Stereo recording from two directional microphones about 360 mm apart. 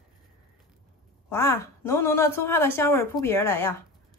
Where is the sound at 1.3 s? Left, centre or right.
Centre.